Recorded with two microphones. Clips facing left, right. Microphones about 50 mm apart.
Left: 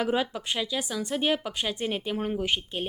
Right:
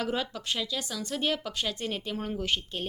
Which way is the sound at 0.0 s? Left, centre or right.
Centre.